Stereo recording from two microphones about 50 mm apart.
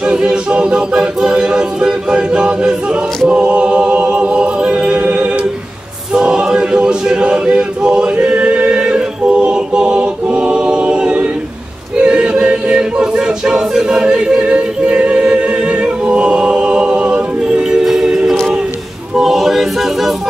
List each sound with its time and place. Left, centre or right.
0.0 s a capella: centre
3.3 s choir: right
17.8 s music: centre
19.1 s a capella: centre